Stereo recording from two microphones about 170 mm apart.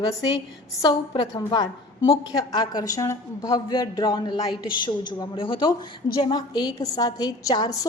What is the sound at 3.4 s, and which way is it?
A woman's voice, 30° left (ahead or behind).